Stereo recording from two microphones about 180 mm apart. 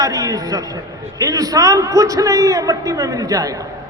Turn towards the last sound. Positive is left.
turn(degrees=-20)  # may be behind; listen again after turning